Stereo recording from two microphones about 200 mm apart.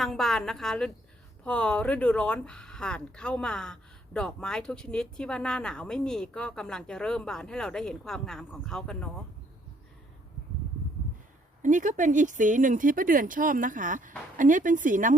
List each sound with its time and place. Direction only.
0.0 s speech: centre (ahead or behind)
11.6 s speech: 40° right (ahead or behind)